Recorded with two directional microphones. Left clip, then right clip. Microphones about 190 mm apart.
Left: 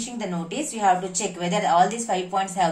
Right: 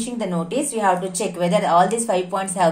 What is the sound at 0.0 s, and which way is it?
A woman's voice, 35° right (ahead or behind).